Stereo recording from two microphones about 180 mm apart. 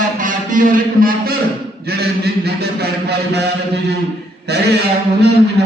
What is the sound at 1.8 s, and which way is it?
A man's voice, 60° right (ahead or behind).